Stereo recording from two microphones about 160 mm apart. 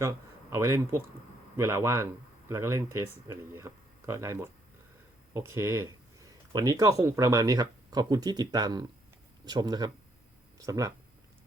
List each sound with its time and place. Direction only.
0.0 s speech: 20° right (ahead or behind)